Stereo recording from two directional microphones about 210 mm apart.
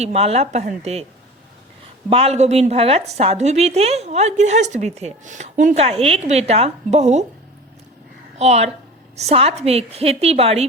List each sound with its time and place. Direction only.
0.0 s speech: 30° right (ahead or behind)
2.0 s a woman's voice: 30° right (ahead or behind)
8.4 s a woman's voice: 30° right (ahead or behind)